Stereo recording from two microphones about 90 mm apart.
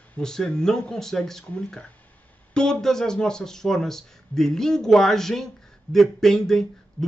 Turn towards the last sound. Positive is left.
turn(degrees=5)  # may be behind; listen again after turning